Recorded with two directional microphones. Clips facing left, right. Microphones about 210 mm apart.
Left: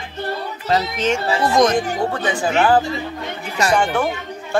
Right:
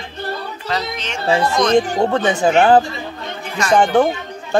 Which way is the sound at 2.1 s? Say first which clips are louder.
Right 5 dB; 25° right (ahead or behind).